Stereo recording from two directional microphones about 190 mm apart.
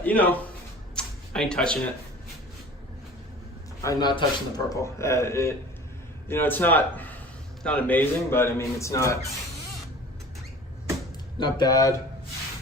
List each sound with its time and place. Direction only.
0.0 s a man's voice: 10° left (ahead or behind)
0.9 s a sound: 5° left (ahead or behind)
3.8 s a man's voice: 25° left (ahead or behind)
11.3 s speech: 20° left (ahead or behind)